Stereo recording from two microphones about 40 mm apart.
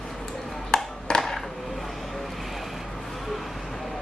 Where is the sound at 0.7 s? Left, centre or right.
Left.